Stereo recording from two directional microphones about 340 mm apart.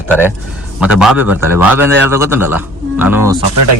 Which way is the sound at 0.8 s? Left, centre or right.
Centre.